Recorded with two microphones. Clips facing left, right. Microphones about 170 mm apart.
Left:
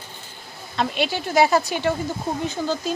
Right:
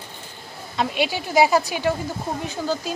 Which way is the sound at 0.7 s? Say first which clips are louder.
Even; 10° right (ahead or behind).